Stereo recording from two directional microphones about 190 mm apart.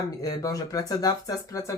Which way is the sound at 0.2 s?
20° left (ahead or behind).